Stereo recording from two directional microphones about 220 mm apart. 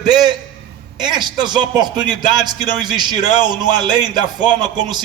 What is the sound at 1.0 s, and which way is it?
Speech, 20° right (ahead or behind).